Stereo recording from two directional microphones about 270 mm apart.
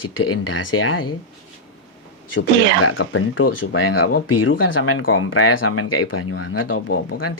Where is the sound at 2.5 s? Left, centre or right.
Right.